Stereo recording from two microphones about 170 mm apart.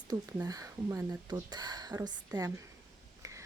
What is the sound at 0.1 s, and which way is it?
Speech, 25° right (ahead or behind).